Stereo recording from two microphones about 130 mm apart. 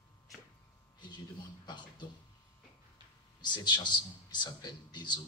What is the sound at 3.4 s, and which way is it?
A man's voice, 35° left (ahead or behind).